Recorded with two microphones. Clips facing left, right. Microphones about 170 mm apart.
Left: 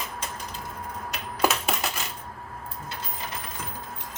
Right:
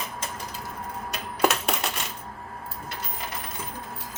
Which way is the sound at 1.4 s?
Centre (ahead or behind).